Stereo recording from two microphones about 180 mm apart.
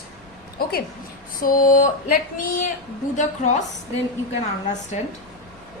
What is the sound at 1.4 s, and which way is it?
A woman's voice, 50° left (ahead or behind).